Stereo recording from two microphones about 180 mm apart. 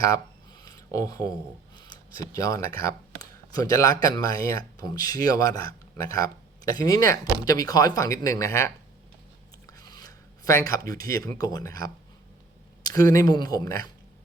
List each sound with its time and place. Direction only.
0.6 s a sound: 20° left (ahead or behind)
2.3 s speech: 20° left (ahead or behind)
9.7 s speech: 20° left (ahead or behind)